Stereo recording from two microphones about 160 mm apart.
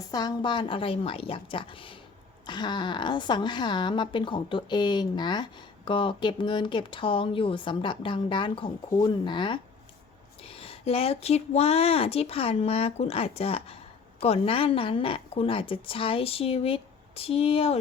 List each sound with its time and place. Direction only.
0.1 s a woman's voice: 25° left (ahead or behind)